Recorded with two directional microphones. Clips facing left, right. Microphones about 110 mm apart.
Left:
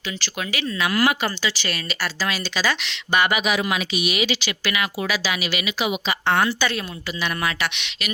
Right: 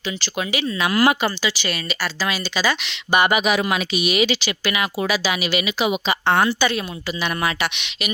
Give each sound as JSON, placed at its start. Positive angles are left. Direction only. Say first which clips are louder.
{"t": 0.2, "sound": "speech", "louder": "right 4 dB", "side_deg": -20}
{"t": 1.4, "sound": "a woman's voice", "louder": "right 2 dB", "side_deg": -10}
{"t": 1.9, "sound": "speech", "louder": "right 1 dB", "side_deg": 0}
{"t": 3.5, "sound": "speech", "louder": "right 2 dB", "side_deg": -45}
{"t": 6.6, "sound": "a woman's voice", "louder": "right 3 dB", "side_deg": -10}